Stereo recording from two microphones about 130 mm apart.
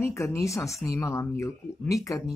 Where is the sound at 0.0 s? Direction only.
20° left (ahead or behind).